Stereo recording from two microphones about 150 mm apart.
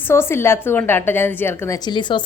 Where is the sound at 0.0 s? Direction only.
15° left (ahead or behind).